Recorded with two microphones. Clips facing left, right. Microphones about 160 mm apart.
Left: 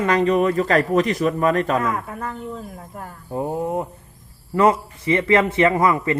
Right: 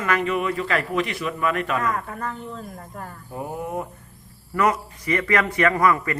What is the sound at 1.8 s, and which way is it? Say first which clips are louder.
Speech: left 2 dB; 5° left (ahead or behind).